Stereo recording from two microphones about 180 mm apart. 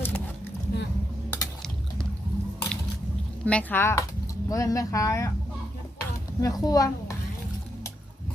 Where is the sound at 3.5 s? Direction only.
10° left (ahead or behind).